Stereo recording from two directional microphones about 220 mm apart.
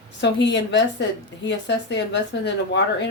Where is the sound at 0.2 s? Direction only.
55° left (ahead or behind).